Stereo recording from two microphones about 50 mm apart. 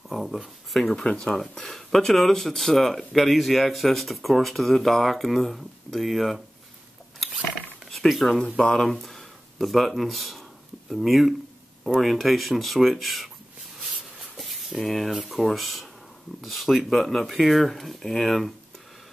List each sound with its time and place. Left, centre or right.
0.1 s speech: centre
1.0 s speech: centre
1.3 s speech: centre
7.9 s speech: centre
8.5 s speech: centre
14.3 s a sound: centre
14.8 s speech: centre